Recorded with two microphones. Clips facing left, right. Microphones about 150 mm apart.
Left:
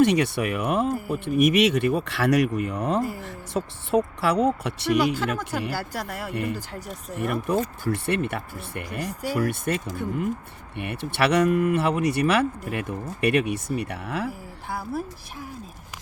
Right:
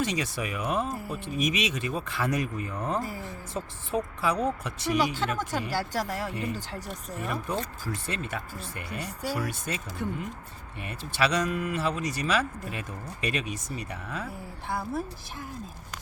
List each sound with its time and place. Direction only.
0.0 s a woman's voice: 65° left (ahead or behind)
5.4 s a woman's voice: centre (ahead or behind)
6.3 s speech: 65° left (ahead or behind)
14.7 s a woman's voice: centre (ahead or behind)